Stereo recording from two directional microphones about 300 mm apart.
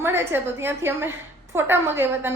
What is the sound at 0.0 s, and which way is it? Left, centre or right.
A woman's voice, centre.